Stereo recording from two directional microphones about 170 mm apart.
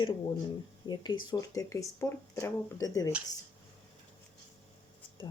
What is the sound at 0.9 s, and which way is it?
Speech, 25° left (ahead or behind).